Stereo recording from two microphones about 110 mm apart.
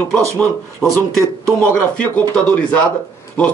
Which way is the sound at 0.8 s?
5° right (ahead or behind).